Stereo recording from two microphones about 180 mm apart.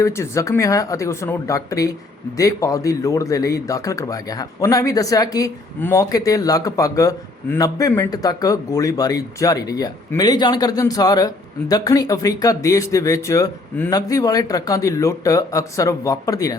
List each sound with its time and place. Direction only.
0.0 s speech: 15° left (ahead or behind)